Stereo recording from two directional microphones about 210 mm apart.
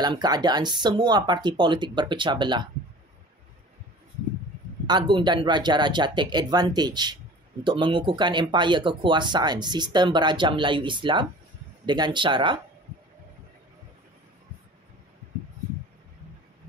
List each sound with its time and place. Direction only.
0.0 s speech: 20° right (ahead or behind)
4.8 s speech: 20° right (ahead or behind)